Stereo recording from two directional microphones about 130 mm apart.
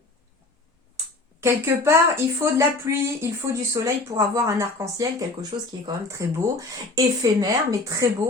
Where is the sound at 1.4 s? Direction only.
20° right (ahead or behind).